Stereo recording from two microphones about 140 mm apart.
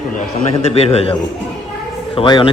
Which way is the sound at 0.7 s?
45° left (ahead or behind).